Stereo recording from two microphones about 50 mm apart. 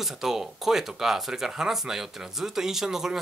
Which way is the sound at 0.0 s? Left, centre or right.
Centre.